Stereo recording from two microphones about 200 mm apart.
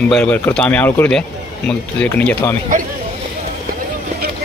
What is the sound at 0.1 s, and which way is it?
Speech, 5° left (ahead or behind).